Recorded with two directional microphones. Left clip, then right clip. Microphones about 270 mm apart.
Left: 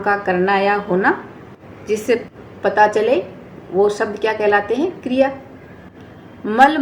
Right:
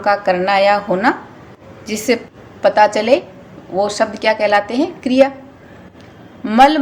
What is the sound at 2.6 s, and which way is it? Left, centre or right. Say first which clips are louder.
A woman's voice: right 2 dB; right.